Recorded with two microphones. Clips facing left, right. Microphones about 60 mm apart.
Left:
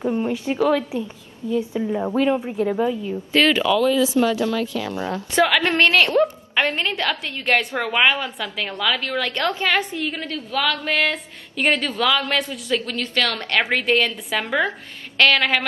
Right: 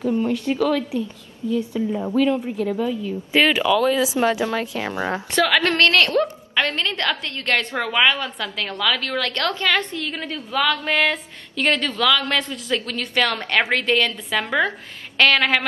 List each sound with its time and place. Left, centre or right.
0.0 s a woman's voice: left
3.3 s speech: centre
4.4 s speech: right
5.6 s a woman's voice: centre
10.1 s a woman's voice: centre
11.5 s a woman's voice: centre
13.7 s a woman's voice: centre